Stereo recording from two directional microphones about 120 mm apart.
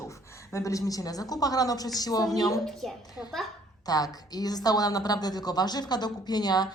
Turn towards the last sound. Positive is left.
turn(degrees=35)  # may be behind; listen again after turning